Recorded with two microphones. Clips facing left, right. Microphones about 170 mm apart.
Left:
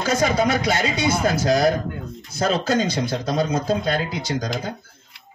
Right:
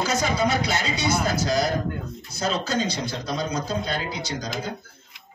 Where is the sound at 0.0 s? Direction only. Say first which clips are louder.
Left 4 dB; 50° left (ahead or behind).